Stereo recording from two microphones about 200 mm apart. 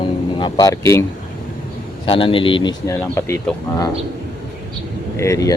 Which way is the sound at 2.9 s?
10° left (ahead or behind).